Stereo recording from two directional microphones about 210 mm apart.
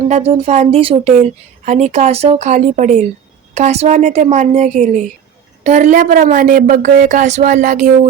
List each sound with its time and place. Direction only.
0.1 s speech: 30° right (ahead or behind)